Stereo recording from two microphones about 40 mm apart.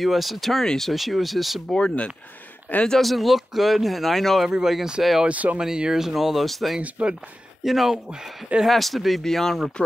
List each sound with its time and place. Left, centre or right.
0.0 s speech: centre
0.9 s speech: centre
1.7 s speech: centre
3.0 s speech: centre
4.5 s speech: centre
5.3 s speech: right
5.6 s speech: centre
6.8 s speech: right
7.6 s speech: centre
9.2 s speech: centre